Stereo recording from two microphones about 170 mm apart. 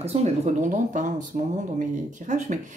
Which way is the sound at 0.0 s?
40° right (ahead or behind).